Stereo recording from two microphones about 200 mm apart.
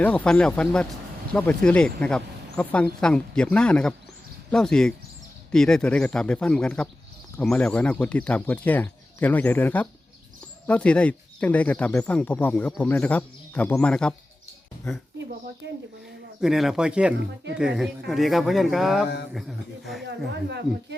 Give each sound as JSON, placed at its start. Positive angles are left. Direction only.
{"t": 0.0, "sound": "speech", "side_deg": 5}
{"t": 16.4, "sound": "speech", "side_deg": 0}
{"t": 20.1, "sound": "speech", "side_deg": -55}